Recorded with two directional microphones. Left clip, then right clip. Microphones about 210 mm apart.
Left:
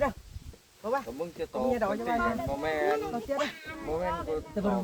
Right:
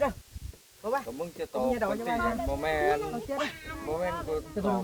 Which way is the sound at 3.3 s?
40° left (ahead or behind).